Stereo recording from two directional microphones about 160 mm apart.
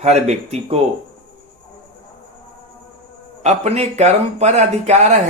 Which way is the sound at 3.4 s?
45° right (ahead or behind).